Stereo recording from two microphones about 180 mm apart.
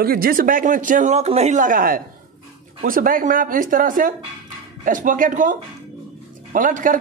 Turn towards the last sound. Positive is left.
turn(degrees=-50)  # may be behind; listen again after turning